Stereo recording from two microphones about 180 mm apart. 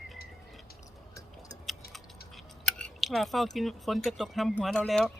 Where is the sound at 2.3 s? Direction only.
5° left (ahead or behind).